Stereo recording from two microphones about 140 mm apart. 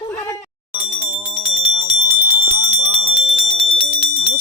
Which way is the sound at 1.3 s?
45° right (ahead or behind).